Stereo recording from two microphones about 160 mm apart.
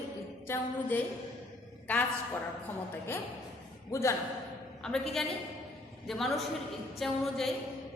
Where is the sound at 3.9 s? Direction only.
20° left (ahead or behind).